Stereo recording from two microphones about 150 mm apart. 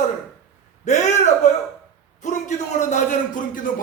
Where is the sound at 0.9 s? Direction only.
55° left (ahead or behind).